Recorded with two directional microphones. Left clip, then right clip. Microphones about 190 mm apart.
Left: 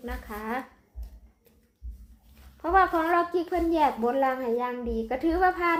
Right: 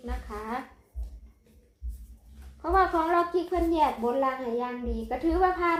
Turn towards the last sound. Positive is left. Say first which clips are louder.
# left 1 dB
turn(degrees=35)  # may be behind; listen again after turning